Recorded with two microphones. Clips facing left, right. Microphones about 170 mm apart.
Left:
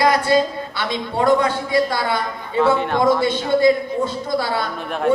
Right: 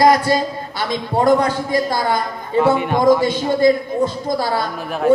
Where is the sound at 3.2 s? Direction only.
40° right (ahead or behind).